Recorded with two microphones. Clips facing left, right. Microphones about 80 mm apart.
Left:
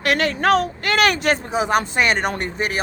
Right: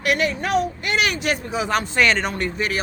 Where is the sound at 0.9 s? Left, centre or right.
Left.